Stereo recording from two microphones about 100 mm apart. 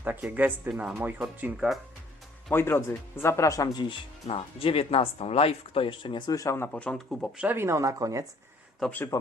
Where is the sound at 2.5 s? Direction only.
25° left (ahead or behind); by 4.0 s 50° left (ahead or behind).